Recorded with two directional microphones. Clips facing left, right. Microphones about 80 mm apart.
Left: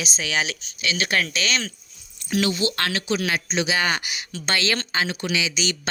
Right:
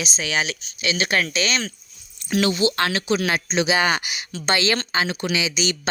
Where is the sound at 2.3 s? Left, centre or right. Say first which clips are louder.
Right 2 dB; right.